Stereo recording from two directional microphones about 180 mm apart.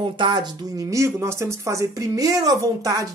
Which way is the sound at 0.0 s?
25° right (ahead or behind).